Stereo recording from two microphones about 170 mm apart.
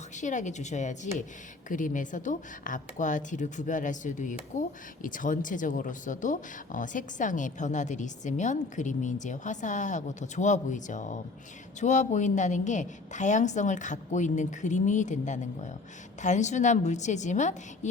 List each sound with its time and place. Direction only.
0.2 s speech: 45° left (ahead or behind)